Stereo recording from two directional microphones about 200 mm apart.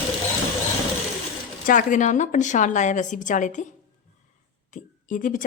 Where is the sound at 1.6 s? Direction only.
40° left (ahead or behind).